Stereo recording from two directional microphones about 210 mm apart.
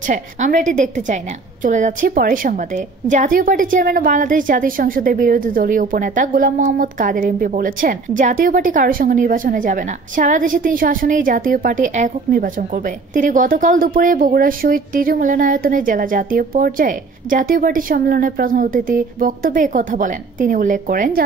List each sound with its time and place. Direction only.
0.1 s a woman's voice: 35° right (ahead or behind)